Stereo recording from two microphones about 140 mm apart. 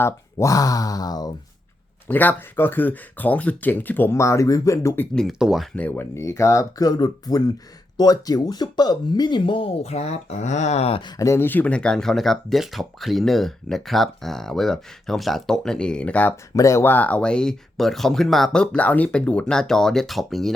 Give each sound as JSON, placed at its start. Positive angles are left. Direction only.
{"t": 0.0, "sound": "speech", "side_deg": 20}
{"t": 2.0, "sound": "speech", "side_deg": 15}
{"t": 5.1, "sound": "speech", "side_deg": 0}
{"t": 5.7, "sound": "speech", "side_deg": 10}
{"t": 11.2, "sound": "speech", "side_deg": 20}
{"t": 16.6, "sound": "speech", "side_deg": 20}